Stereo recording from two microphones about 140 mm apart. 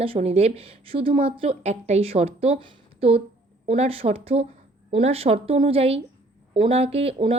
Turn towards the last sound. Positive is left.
turn(degrees=-45)  # may be behind; listen again after turning